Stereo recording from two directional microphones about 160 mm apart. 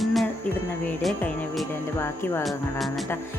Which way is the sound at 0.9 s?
5° left (ahead or behind).